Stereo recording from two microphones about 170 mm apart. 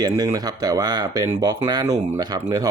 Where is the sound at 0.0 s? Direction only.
20° right (ahead or behind).